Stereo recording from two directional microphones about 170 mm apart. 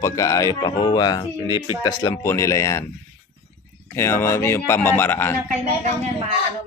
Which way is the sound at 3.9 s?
15° left (ahead or behind).